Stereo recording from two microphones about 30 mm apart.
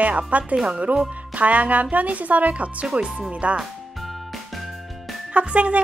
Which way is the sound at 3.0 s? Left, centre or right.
Right.